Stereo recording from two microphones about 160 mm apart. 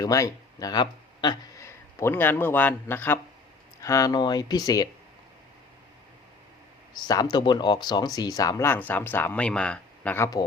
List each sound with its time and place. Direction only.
0.0 s speech: 20° left (ahead or behind)
1.6 s speech: 15° left (ahead or behind)
7.1 s speech: 25° left (ahead or behind); by 10.2 s 10° left (ahead or behind)